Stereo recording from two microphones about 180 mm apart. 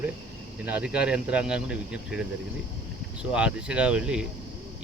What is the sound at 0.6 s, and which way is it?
Speech, 5° right (ahead or behind).